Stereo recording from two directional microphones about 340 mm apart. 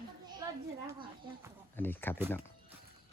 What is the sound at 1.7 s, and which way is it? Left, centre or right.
Speech, centre.